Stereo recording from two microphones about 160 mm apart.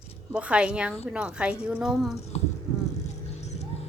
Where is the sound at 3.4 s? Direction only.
45° left (ahead or behind).